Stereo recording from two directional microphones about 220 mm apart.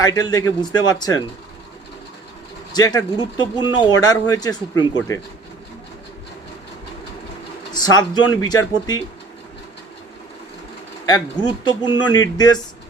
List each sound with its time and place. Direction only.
0.0 s a man's voice: 15° left (ahead or behind)
2.7 s speech: 20° left (ahead or behind)
7.7 s speech: 20° left (ahead or behind)
11.4 s speech: 20° left (ahead or behind)